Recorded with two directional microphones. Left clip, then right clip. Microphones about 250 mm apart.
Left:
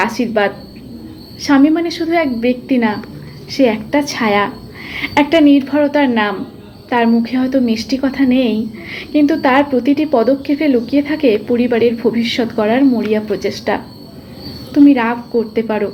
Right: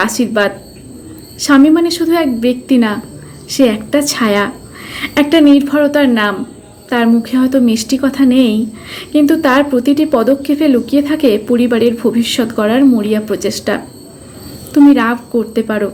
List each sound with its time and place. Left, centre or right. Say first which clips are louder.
0.0 s a woman's voice: right 2 dB; centre